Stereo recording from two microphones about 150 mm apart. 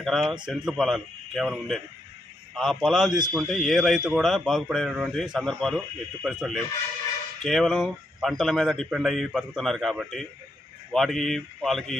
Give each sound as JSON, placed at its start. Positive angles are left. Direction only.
{"t": 0.0, "sound": "speech", "side_deg": 0}
{"t": 3.1, "sound": "a man's voice", "side_deg": -30}
{"t": 3.3, "sound": "speech", "side_deg": 0}